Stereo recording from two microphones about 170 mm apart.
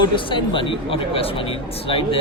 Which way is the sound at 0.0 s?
30° left (ahead or behind).